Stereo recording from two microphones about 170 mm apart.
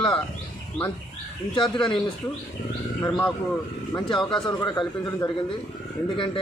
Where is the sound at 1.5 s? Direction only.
30° left (ahead or behind).